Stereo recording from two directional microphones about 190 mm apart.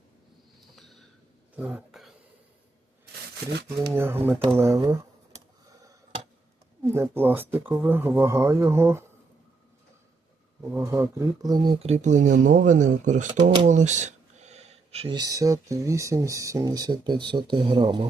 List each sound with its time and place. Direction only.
0.8 s a sound: centre (ahead or behind)
3.9 s speech: 10° right (ahead or behind)
6.8 s speech: 15° right (ahead or behind)
10.6 s speech: 15° right (ahead or behind)